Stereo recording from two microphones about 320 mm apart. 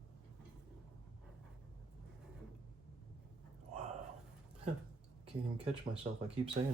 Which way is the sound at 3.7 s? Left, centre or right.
Right.